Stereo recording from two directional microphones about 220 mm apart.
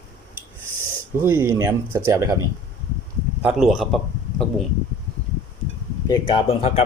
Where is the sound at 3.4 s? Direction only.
5° right (ahead or behind).